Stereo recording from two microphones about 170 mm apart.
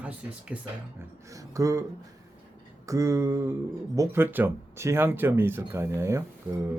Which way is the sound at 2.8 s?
20° right (ahead or behind).